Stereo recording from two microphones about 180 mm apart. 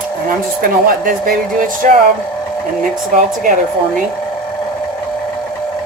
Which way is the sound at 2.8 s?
45° right (ahead or behind).